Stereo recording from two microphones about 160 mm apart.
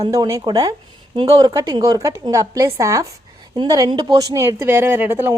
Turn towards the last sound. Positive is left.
turn(degrees=-15)  # may be behind; listen again after turning